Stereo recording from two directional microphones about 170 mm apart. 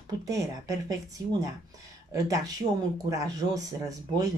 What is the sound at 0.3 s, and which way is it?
Speech, 20° right (ahead or behind).